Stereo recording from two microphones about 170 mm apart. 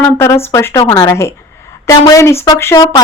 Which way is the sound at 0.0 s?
15° left (ahead or behind).